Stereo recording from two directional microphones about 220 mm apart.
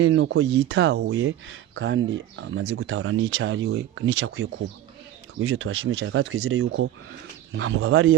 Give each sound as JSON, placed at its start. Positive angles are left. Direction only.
{"t": 0.0, "sound": "speech", "side_deg": -55}
{"t": 6.7, "sound": "speech", "side_deg": -55}